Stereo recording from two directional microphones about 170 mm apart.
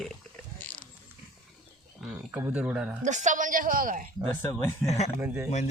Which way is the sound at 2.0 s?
5° right (ahead or behind).